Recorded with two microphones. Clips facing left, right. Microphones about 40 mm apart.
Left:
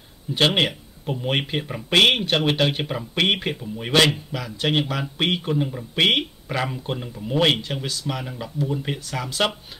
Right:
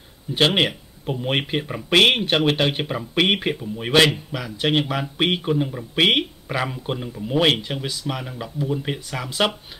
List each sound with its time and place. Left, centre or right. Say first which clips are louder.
0.6 s speech: right 1 dB; centre